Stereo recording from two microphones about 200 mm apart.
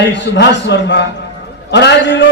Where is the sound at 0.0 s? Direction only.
60° left (ahead or behind).